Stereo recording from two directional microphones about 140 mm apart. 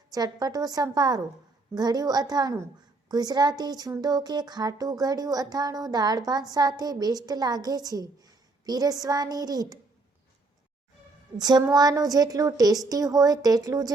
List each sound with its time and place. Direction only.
0.1 s speech: 30° right (ahead or behind)
11.3 s speech: 30° right (ahead or behind)